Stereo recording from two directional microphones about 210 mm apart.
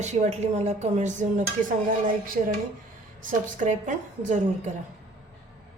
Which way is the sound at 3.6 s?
35° right (ahead or behind).